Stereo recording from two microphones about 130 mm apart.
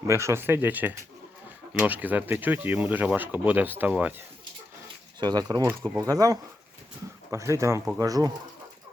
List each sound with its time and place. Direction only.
0.1 s speech: 20° right (ahead or behind)
5.2 s speech: 30° right (ahead or behind)